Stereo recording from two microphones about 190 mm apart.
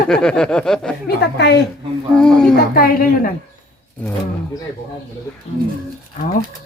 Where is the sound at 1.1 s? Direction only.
65° left (ahead or behind).